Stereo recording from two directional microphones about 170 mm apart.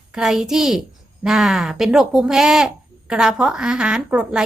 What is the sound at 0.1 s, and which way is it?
A woman's voice, 5° right (ahead or behind).